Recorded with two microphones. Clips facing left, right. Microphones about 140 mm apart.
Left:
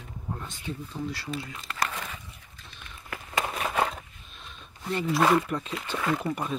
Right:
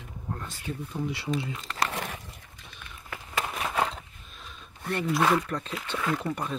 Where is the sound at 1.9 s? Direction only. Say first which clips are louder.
Right 3 dB; 75° right (ahead or behind).